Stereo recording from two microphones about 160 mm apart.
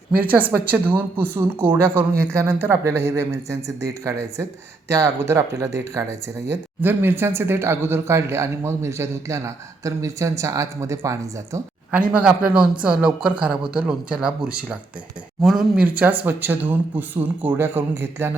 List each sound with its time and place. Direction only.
0.2 s speech: 10° right (ahead or behind)
11.9 s speech: 5° right (ahead or behind)